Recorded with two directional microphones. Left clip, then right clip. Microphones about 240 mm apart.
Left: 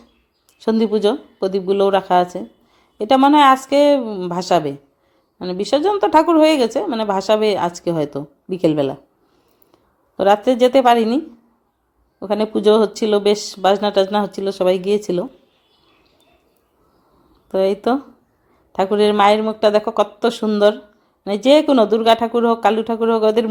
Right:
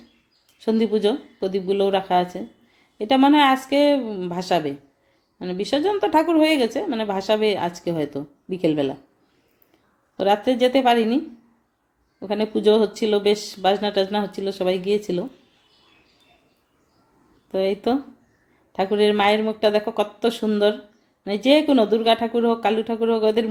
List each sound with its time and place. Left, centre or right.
0.6 s a woman's voice: centre
10.2 s speech: centre
12.2 s a woman's voice: centre
17.5 s a woman's voice: centre